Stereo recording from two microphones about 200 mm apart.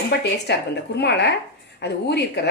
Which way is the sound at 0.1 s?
55° left (ahead or behind).